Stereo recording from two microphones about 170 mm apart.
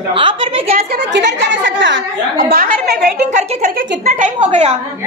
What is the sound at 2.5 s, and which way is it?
Speech, 75° right (ahead or behind).